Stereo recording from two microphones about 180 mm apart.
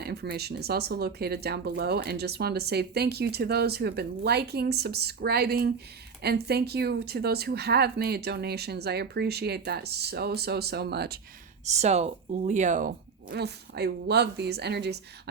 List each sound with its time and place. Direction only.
0.0 s speech: 65° right (ahead or behind)
11.6 s speech: 40° right (ahead or behind)
13.3 s a woman's voice: 65° right (ahead or behind)